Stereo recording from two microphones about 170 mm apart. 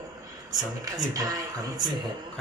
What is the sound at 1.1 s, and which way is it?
Speech, 20° right (ahead or behind).